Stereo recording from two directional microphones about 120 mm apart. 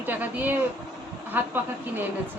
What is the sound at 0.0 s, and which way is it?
A woman's voice, 15° right (ahead or behind).